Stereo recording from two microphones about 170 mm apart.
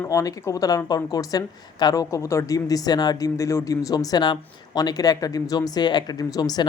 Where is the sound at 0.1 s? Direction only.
20° left (ahead or behind).